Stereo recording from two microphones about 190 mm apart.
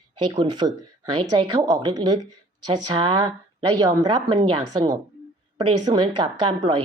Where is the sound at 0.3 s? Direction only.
25° right (ahead or behind).